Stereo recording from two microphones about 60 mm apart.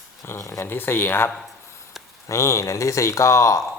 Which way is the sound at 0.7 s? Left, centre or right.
Left.